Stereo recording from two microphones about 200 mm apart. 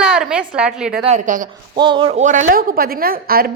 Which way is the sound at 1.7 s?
25° right (ahead or behind).